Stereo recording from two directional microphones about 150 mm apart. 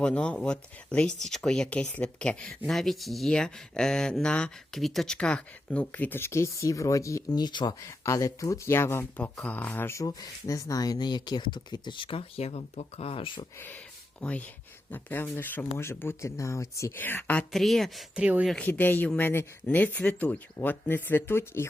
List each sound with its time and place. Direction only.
0.0 s speech: 5° left (ahead or behind); by 13.4 s 35° left (ahead or behind)
14.2 s speech: 10° left (ahead or behind); by 18.5 s 10° right (ahead or behind)
18.5 s speech: 10° left (ahead or behind)